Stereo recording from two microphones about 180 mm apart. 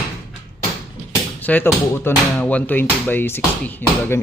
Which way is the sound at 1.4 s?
10° left (ahead or behind).